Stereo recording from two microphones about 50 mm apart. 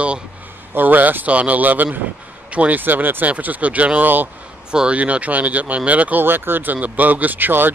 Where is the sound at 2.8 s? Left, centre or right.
Right.